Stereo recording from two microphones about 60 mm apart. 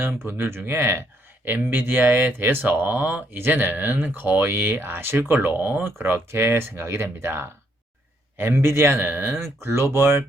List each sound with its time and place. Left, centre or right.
0.2 s speech: right
1.5 s speech: right
3.3 s a man's voice: right